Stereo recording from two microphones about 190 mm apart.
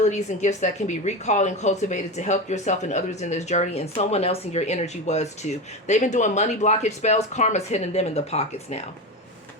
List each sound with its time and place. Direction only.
0.0 s speech: 35° left (ahead or behind)